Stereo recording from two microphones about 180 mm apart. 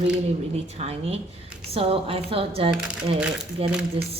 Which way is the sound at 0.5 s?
35° right (ahead or behind).